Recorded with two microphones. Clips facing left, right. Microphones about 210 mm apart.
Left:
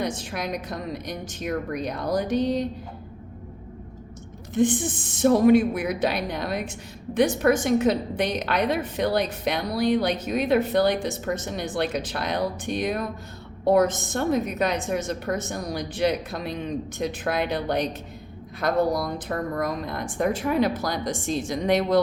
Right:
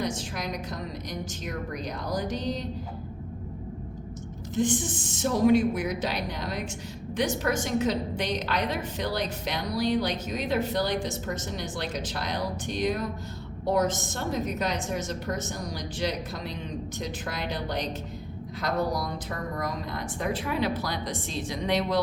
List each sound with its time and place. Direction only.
0.0 s a woman's voice: 60° left (ahead or behind)
4.5 s a woman's voice: 55° left (ahead or behind)